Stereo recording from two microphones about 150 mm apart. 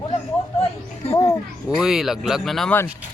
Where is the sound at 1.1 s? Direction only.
20° left (ahead or behind).